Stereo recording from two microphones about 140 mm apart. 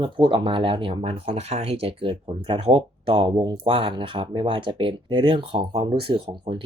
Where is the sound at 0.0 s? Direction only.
35° right (ahead or behind).